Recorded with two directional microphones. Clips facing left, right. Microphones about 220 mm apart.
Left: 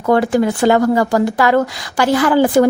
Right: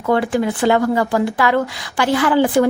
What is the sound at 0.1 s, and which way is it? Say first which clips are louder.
Speech: left 3 dB; 40° left (ahead or behind).